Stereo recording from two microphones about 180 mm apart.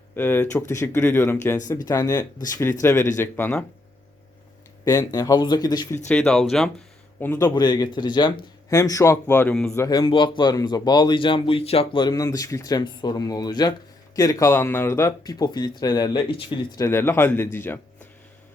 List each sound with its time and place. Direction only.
0.2 s speech: 10° left (ahead or behind)
4.9 s speech: 20° left (ahead or behind)
6.1 s speech: 5° left (ahead or behind)
7.2 s speech: 15° left (ahead or behind)
9.7 s speech: 20° left (ahead or behind)